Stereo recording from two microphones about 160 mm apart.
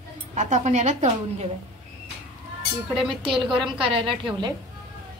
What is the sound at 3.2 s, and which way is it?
A woman's voice, 30° right (ahead or behind).